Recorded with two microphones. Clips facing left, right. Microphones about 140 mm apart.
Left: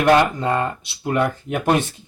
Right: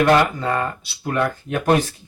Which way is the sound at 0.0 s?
15° left (ahead or behind).